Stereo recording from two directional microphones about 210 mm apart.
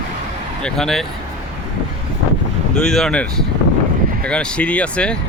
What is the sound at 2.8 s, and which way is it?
Speech, centre (ahead or behind).